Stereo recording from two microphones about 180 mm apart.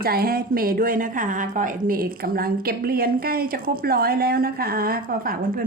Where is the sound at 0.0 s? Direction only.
55° right (ahead or behind).